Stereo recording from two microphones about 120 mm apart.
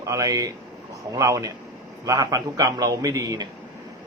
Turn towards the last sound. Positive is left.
turn(degrees=-30)  # may be behind; listen again after turning